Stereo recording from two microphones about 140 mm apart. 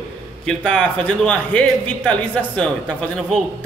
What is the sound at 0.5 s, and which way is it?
A man's voice, 5° left (ahead or behind).